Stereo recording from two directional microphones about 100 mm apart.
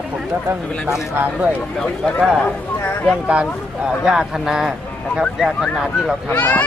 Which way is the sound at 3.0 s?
10° right (ahead or behind).